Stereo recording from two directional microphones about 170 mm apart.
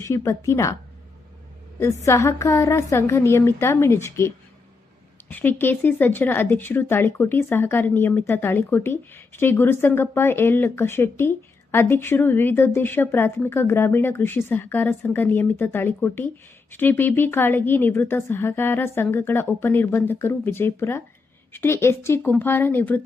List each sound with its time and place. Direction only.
0.0 s speech: 15° left (ahead or behind)
1.8 s speech: 20° left (ahead or behind)
5.3 s speech: 10° left (ahead or behind)